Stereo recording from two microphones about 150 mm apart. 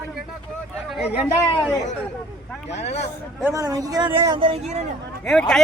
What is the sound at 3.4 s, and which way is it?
Speech, 20° right (ahead or behind).